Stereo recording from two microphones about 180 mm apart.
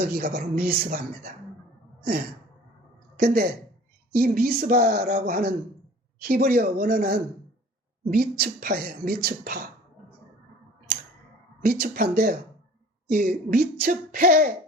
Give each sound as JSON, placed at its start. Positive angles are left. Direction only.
{"t": 0.0, "sound": "speech", "side_deg": -60}
{"t": 3.2, "sound": "speech", "side_deg": -65}
{"t": 11.6, "sound": "speech", "side_deg": -55}